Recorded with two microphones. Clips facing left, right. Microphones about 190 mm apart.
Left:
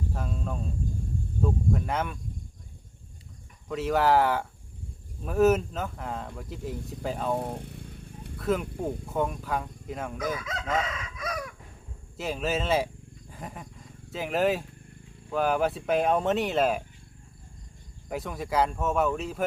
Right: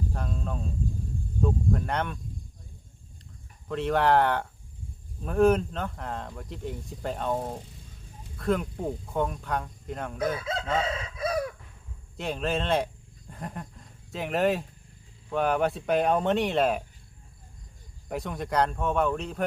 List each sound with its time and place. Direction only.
0.1 s speech: 5° left (ahead or behind)
3.7 s speech: 5° left (ahead or behind)
7.6 s vehicle: 60° left (ahead or behind)
8.4 s speech: 5° left (ahead or behind)
10.2 s chicken: 30° right (ahead or behind)
12.1 s speech: 5° left (ahead or behind)
13.3 s goat: centre (ahead or behind)
15.3 s speech: centre (ahead or behind)
18.1 s speech: centre (ahead or behind)